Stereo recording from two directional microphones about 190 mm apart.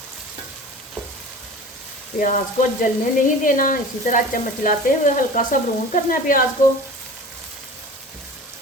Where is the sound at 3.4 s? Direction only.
45° left (ahead or behind).